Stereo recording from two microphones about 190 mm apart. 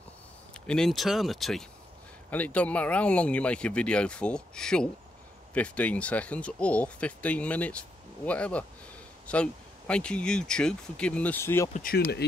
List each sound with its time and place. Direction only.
0.7 s speech: centre (ahead or behind)
11.7 s speech: 50° left (ahead or behind)